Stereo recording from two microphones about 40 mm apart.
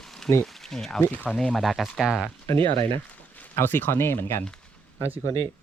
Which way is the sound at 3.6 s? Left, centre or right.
Left.